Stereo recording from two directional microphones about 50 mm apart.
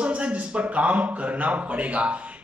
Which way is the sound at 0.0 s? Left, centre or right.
Right.